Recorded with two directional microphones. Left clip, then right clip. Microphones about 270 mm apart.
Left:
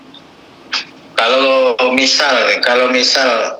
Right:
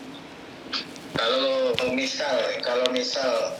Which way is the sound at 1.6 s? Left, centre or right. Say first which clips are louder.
Left 12 dB; left.